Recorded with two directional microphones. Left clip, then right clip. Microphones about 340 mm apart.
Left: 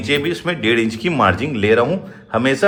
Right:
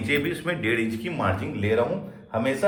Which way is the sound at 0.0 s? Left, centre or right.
Centre.